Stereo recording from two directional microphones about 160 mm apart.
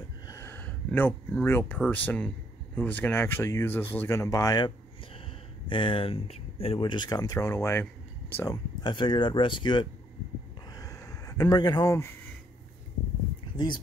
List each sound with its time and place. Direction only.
0.3 s speech: 15° left (ahead or behind)
8.8 s speech: 30° left (ahead or behind)
10.7 s a sound: 20° left (ahead or behind)